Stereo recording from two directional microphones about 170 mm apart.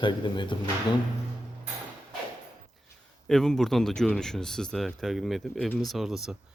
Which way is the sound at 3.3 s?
Centre (ahead or behind).